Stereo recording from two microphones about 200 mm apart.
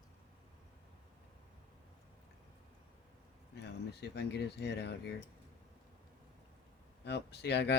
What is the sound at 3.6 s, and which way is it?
Speech, 55° left (ahead or behind).